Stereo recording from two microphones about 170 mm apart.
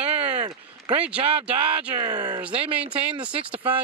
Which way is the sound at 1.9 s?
20° right (ahead or behind).